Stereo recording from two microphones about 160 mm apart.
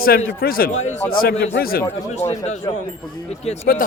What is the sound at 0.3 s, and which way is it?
A man's voice, 70° left (ahead or behind).